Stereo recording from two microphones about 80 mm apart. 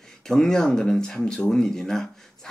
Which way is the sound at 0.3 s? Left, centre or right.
Centre.